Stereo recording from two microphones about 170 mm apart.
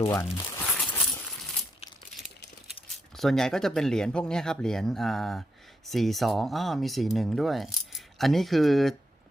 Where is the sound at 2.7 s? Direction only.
Centre (ahead or behind).